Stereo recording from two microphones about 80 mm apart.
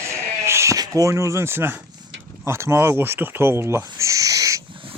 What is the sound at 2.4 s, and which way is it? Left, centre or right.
Speech, right.